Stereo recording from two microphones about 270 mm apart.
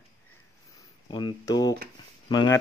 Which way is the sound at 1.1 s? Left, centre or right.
Centre.